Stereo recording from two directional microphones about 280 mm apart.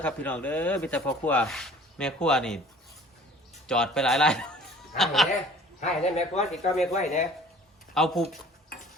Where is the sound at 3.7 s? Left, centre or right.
Centre.